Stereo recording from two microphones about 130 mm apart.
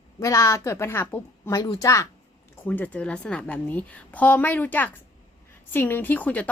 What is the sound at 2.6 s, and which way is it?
Speech, 15° left (ahead or behind).